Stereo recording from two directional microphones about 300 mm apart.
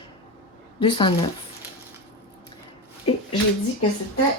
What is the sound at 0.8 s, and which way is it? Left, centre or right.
Speech, centre.